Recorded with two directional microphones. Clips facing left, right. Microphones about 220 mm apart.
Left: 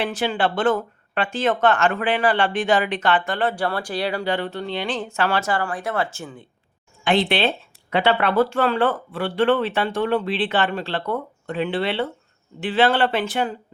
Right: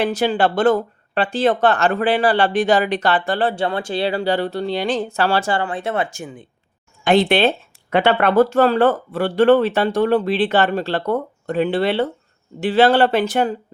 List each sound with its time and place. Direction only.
0.0 s speech: 40° right (ahead or behind); by 6.5 s 15° right (ahead or behind)
7.0 s speech: 45° right (ahead or behind)